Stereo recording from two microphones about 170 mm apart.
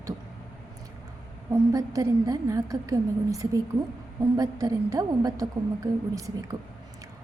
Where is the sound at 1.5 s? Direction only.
20° right (ahead or behind).